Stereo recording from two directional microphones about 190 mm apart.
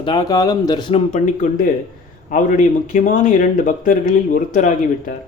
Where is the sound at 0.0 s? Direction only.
25° left (ahead or behind); by 4.7 s 45° left (ahead or behind).